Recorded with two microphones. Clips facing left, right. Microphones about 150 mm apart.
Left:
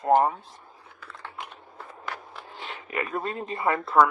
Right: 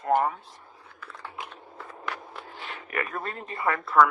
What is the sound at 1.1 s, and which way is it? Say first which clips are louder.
Computer keyboard: even; 10° right (ahead or behind).